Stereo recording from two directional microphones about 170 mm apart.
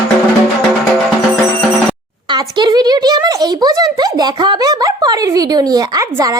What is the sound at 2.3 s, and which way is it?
Speech, 25° right (ahead or behind).